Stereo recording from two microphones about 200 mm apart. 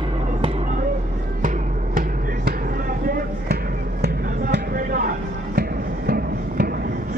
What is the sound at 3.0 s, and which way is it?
Basketball bounce, 50° right (ahead or behind).